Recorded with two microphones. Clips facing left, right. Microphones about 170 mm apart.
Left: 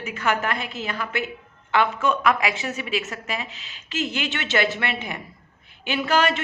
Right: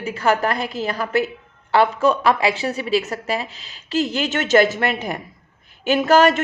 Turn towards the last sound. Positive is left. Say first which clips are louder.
# right 7 dB
turn(degrees=-45)  # may be behind; listen again after turning